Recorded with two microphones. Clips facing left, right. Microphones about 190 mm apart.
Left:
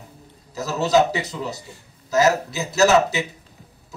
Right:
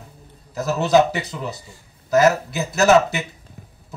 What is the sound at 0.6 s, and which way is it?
A man's voice, 55° right (ahead or behind).